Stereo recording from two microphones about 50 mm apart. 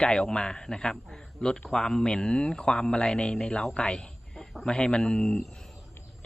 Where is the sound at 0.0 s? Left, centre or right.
Centre.